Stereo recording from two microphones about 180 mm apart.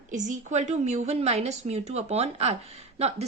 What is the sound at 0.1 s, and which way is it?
Speech, 45° right (ahead or behind).